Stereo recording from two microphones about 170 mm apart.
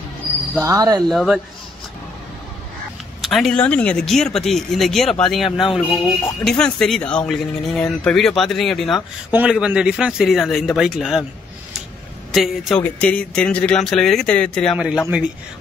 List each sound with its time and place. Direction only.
0.7 s speech: 20° right (ahead or behind)
1.0 s speech: centre (ahead or behind)
3.2 s speech: centre (ahead or behind)
12.4 s speech: 5° left (ahead or behind)